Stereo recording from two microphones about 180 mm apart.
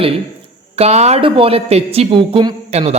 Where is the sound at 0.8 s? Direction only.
35° right (ahead or behind).